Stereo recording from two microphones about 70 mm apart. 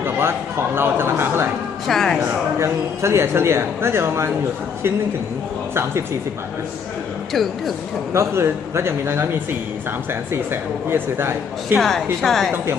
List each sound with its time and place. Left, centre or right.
0.8 s speech: right
1.9 s speech: centre
2.6 s speech: right
7.3 s speech: centre
8.1 s speech: right
11.8 s speech: centre